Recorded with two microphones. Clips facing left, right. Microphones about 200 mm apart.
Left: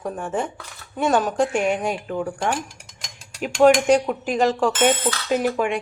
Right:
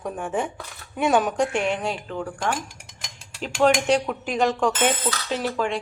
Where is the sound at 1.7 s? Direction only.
15° left (ahead or behind).